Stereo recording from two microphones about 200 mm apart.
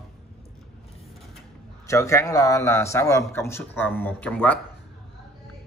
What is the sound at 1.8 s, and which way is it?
Speech, 15° left (ahead or behind).